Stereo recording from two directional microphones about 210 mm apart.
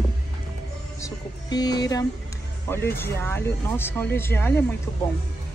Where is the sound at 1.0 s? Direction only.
20° left (ahead or behind).